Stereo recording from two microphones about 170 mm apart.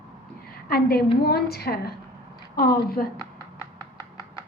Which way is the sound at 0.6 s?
65° left (ahead or behind).